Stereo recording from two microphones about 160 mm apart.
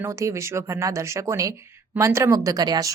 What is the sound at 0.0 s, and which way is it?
A woman's voice, 15° right (ahead or behind).